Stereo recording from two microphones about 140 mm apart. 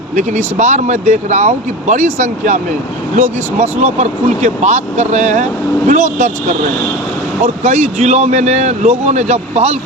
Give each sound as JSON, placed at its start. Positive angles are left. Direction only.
{"t": 0.2, "sound": "speech", "side_deg": -60}
{"t": 7.4, "sound": "speech", "side_deg": -55}